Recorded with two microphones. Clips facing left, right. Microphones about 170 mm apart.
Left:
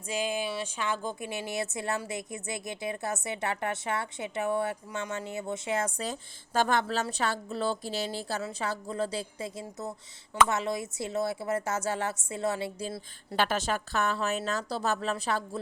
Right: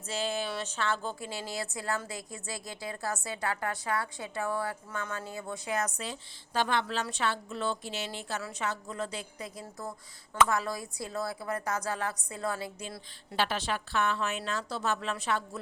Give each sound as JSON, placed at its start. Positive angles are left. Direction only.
{"t": 0.1, "sound": "a sound", "side_deg": 15}
{"t": 1.0, "sound": "a woman's voice", "side_deg": 20}
{"t": 6.0, "sound": "a woman's voice", "side_deg": 45}
{"t": 13.3, "sound": "a woman's voice", "side_deg": 50}